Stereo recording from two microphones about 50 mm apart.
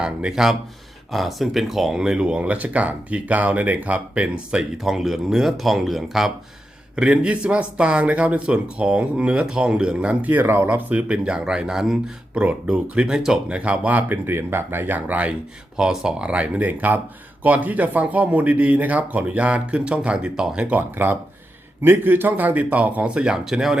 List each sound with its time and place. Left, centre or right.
0.0 s speech: centre
2.0 s speech: centre
4.8 s speech: centre
6.9 s speech: right
10.4 s speech: right; by 12.1 s centre
12.3 s speech: right; by 13.4 s centre
13.5 s speech: right
14.1 s speech: right
15.8 s speech: centre
20.9 s speech: right
23.5 s speech: centre